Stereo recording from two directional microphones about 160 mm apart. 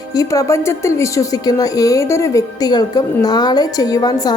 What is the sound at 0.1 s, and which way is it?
A woman's voice, 20° left (ahead or behind).